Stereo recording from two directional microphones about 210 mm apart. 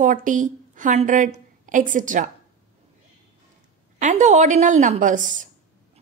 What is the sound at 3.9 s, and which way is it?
A woman's voice, 35° right (ahead or behind).